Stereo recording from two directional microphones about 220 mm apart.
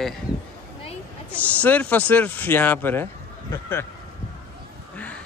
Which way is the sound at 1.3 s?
5° left (ahead or behind).